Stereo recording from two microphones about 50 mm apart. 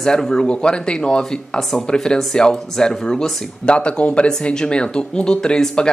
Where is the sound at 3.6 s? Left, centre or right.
Left.